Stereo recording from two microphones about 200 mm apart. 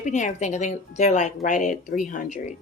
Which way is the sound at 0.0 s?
35° left (ahead or behind).